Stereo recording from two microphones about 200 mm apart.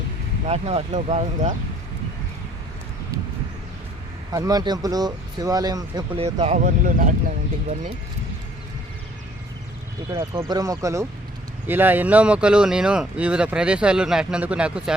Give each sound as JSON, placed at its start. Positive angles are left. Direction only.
{"t": 0.4, "sound": "speech", "side_deg": -30}
{"t": 4.3, "sound": "speech", "side_deg": -20}
{"t": 10.1, "sound": "speech", "side_deg": -15}